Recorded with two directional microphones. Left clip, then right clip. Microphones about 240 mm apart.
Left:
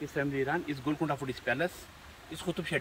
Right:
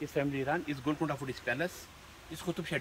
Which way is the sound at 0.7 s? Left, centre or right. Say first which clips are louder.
Left 1 dB; centre.